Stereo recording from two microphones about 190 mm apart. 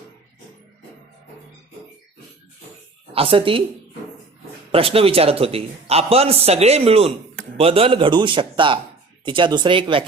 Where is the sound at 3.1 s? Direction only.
30° right (ahead or behind).